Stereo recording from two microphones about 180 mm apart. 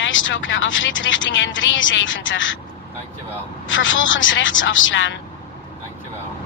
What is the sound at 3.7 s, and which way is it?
Speech, 90° left.